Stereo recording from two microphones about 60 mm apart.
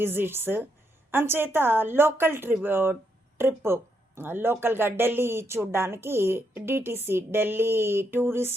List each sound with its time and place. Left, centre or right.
0.0 s speech: right